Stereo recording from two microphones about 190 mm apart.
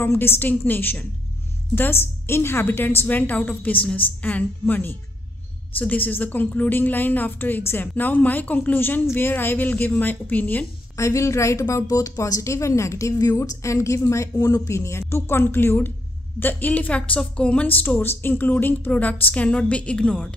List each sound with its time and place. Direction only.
0.0 s a woman's voice: 10° left (ahead or behind)